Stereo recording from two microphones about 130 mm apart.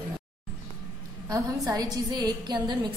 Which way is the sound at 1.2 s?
25° right (ahead or behind).